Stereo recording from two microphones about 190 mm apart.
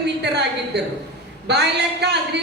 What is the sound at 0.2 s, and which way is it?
Speech, 60° right (ahead or behind).